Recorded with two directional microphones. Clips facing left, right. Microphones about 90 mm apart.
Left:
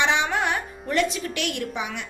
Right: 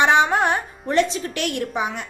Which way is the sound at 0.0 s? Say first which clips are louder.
Right 6 dB; 45° right (ahead or behind).